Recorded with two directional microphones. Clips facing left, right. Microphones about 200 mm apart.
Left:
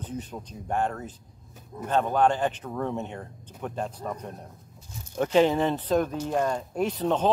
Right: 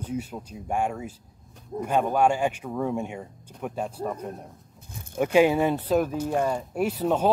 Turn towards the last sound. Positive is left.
turn(degrees=-10)  # may be behind; listen again after turning